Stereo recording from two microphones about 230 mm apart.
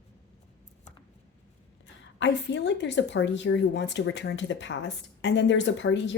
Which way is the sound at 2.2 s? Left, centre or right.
Left.